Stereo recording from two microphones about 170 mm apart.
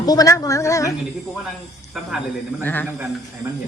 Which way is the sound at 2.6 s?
10° left (ahead or behind).